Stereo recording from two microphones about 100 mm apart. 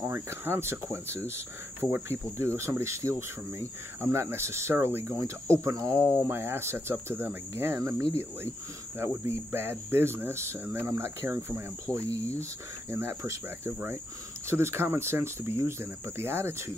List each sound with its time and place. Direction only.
0.0 s cricket: 25° right (ahead or behind)